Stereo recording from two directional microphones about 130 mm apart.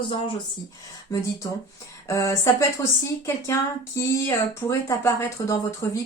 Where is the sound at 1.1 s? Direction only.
25° left (ahead or behind).